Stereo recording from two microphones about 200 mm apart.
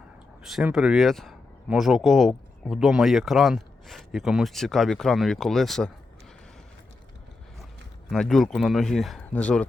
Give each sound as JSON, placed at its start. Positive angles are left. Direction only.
{"t": 0.4, "sound": "speech", "side_deg": 0}
{"t": 8.1, "sound": "speech", "side_deg": 0}